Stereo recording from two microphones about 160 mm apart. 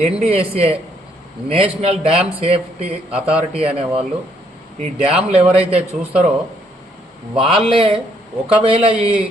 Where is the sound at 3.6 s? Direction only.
35° right (ahead or behind).